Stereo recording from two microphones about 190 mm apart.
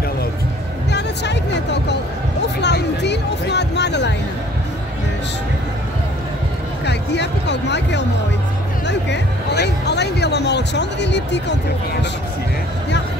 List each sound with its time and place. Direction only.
0.9 s music: 65° left (ahead or behind)
2.6 s a sound: 65° left (ahead or behind)
6.9 s speech: 65° left (ahead or behind)